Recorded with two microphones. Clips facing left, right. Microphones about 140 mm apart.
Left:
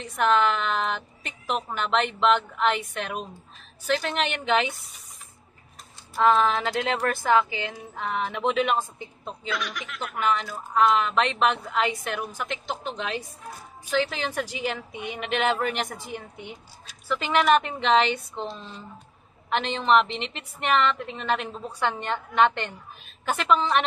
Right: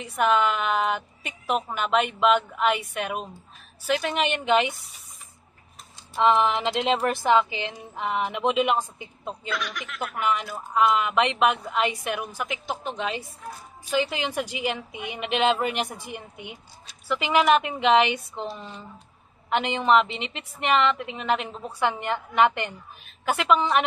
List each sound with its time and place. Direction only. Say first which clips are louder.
0.0 s a woman's voice: even; 10° right (ahead or behind)
6.1 s a woman's voice: even; 20° right (ahead or behind)
9.5 s a woman's voice: left 1 dB; centre (ahead or behind)